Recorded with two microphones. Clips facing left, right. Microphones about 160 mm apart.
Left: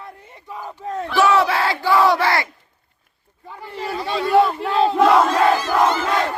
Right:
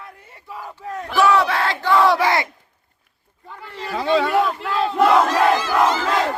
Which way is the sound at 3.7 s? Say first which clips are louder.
Left 4 dB; 25° left (ahead or behind).